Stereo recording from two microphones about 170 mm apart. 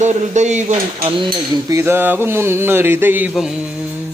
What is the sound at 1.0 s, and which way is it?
Cutlery, 30° right (ahead or behind).